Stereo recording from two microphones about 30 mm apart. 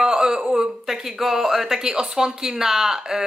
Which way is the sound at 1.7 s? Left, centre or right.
Centre.